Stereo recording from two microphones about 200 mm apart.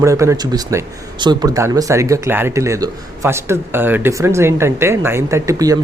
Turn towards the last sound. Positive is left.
turn(degrees=-15)  # may be behind; listen again after turning